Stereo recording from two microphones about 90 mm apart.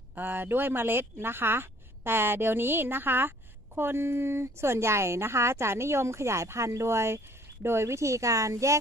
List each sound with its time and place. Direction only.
0.1 s speech: 20° right (ahead or behind)